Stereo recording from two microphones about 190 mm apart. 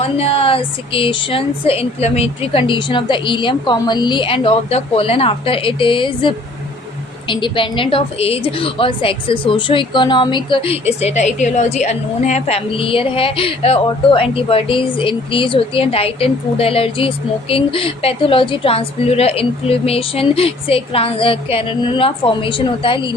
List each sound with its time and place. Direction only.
0.0 s a woman's voice: 30° left (ahead or behind)